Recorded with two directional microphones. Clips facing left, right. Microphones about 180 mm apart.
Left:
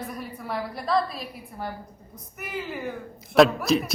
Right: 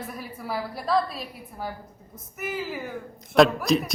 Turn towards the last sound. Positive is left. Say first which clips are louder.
# even
turn(degrees=0)  # may be behind; listen again after turning